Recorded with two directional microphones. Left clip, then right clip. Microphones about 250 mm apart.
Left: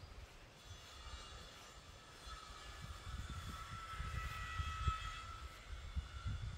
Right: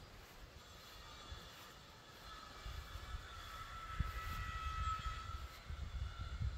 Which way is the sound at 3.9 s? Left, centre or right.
Left.